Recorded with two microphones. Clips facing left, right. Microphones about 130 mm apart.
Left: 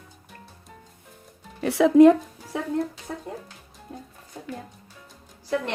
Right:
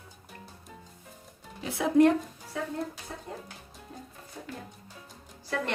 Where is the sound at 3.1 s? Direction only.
70° left (ahead or behind).